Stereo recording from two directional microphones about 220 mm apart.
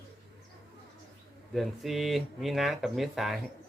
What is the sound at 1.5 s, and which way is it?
Speech, centre (ahead or behind).